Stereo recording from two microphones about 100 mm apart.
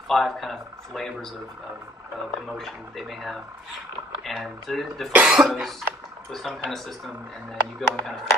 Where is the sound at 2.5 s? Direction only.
Centre (ahead or behind).